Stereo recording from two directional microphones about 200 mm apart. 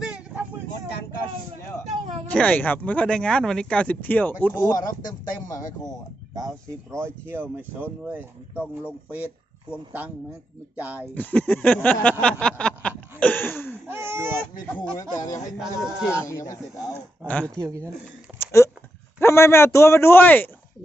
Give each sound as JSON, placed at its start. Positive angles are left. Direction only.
{"t": 0.0, "sound": "vehicle", "side_deg": -5}
{"t": 2.3, "sound": "speech", "side_deg": 5}
{"t": 7.0, "sound": "speech", "side_deg": -10}
{"t": 10.8, "sound": "speech", "side_deg": -5}
{"t": 11.1, "sound": "speech", "side_deg": 5}
{"t": 13.1, "sound": "a sound", "side_deg": 10}
{"t": 13.8, "sound": "speech", "side_deg": -10}
{"t": 14.9, "sound": "speech", "side_deg": 15}
{"t": 15.6, "sound": "speech", "side_deg": -5}
{"t": 16.1, "sound": "speech", "side_deg": 15}
{"t": 17.6, "sound": "speech", "side_deg": -15}
{"t": 18.3, "sound": "speech", "side_deg": 15}